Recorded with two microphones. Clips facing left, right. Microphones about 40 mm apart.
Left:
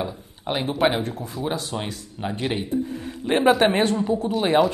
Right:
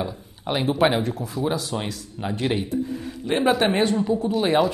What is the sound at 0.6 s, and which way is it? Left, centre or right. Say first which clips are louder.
A man's voice: right 2 dB; centre.